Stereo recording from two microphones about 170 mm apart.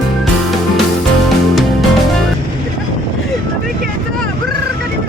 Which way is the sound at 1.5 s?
Centre (ahead or behind).